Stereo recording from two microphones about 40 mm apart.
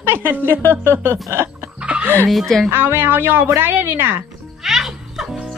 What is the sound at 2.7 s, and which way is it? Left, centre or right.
Speech, right.